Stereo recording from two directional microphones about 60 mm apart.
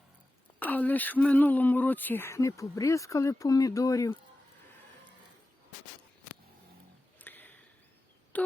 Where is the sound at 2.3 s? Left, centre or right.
Left.